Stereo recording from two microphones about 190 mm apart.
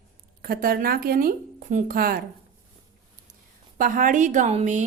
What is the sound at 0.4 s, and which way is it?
Speech, 50° right (ahead or behind).